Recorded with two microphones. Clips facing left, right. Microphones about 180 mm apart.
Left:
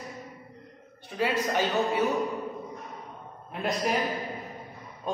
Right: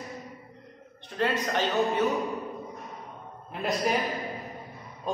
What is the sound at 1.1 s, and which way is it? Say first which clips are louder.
Speech: left 1 dB; 10° left (ahead or behind).